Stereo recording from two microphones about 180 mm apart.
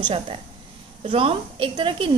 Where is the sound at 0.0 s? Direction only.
30° right (ahead or behind).